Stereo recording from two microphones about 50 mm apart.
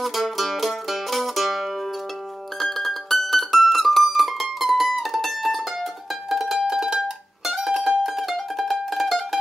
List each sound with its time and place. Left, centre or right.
0.0 s music: centre
2.6 s mandolin: centre
6.3 s music: centre
7.4 s mandolin: centre